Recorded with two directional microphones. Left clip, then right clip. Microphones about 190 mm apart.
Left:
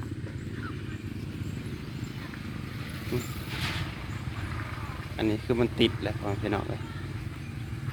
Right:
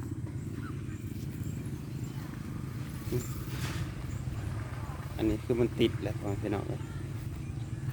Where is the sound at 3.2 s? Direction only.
50° right (ahead or behind).